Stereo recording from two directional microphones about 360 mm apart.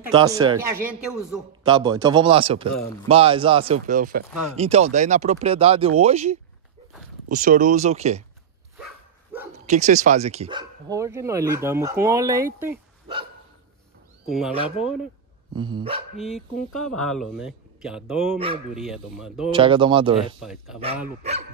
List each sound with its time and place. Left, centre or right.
0.1 s speech: centre
9.7 s speech: centre
15.5 s speech: centre
16.2 s speech: centre
19.5 s speech: centre
20.4 s speech: centre
21.2 s speech: centre